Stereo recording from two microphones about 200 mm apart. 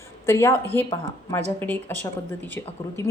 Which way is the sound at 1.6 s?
10° left (ahead or behind).